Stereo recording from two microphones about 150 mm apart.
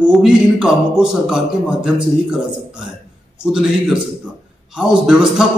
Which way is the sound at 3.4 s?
5° right (ahead or behind).